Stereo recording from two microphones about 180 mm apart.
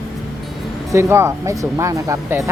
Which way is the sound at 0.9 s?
15° right (ahead or behind).